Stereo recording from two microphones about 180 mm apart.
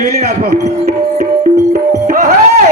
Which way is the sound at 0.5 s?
45° right (ahead or behind).